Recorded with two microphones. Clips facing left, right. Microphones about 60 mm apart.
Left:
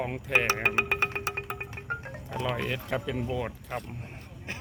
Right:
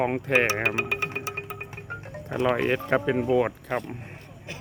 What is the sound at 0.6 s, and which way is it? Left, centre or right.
Music, left.